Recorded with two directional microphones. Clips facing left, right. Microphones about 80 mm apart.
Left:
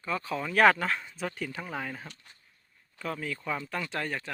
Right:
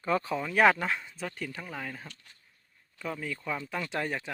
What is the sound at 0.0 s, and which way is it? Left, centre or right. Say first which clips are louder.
Speech: right 4 dB; right.